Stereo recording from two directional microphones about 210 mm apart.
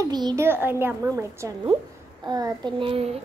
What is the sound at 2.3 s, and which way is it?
Child singing, 20° right (ahead or behind).